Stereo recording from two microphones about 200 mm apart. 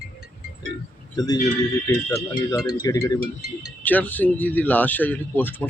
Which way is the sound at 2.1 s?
15° left (ahead or behind).